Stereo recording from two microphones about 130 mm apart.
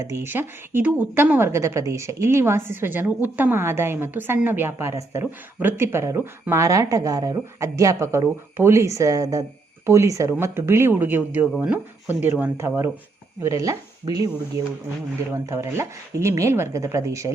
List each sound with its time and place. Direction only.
0.0 s a woman's voice: 20° right (ahead or behind)